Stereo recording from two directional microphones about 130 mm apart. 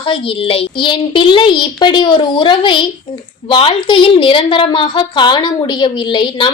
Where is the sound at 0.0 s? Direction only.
45° left (ahead or behind).